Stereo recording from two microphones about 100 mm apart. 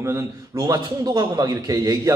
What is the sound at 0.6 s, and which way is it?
A man's voice, 40° right (ahead or behind).